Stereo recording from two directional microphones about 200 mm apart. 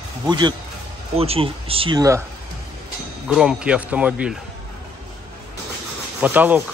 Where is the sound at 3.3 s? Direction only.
5° right (ahead or behind).